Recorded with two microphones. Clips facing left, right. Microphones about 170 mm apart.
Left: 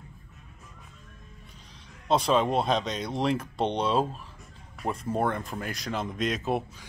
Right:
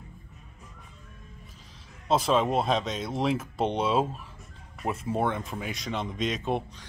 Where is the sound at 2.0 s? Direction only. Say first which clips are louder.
Even; centre (ahead or behind).